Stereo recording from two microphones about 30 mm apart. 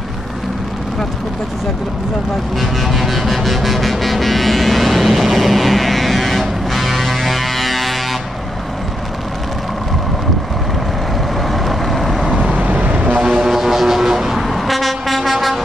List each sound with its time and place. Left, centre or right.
2.6 s vehicle: centre
11.4 s vehicle: centre
12.5 s vehicle: right
13.4 s vehicle: centre